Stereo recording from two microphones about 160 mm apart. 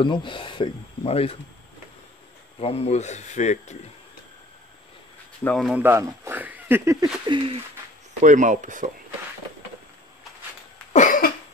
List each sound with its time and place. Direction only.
0.0 s speech: 30° left (ahead or behind)
2.6 s speech: 40° left (ahead or behind)
5.4 s speech: 5° left (ahead or behind)
5.7 s speech: 15° right (ahead or behind)
7.2 s bird: 30° right (ahead or behind)
8.2 s speech: 50° right (ahead or behind)
10.9 s cough: 55° left (ahead or behind)